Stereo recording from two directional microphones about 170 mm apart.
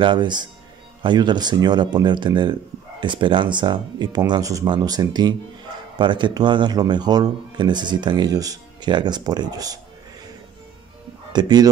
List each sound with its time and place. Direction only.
0.0 s speech: 25° right (ahead or behind)
11.3 s speech: 25° right (ahead or behind)